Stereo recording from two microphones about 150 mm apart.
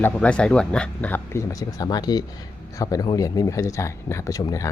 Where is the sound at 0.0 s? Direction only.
5° left (ahead or behind).